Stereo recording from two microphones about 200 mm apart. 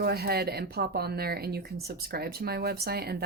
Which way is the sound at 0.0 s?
50° right (ahead or behind).